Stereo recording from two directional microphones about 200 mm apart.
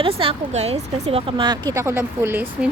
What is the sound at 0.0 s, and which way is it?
A woman's voice, 25° right (ahead or behind).